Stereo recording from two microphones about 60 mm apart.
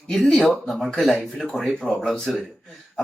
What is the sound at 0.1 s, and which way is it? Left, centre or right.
Speech, centre.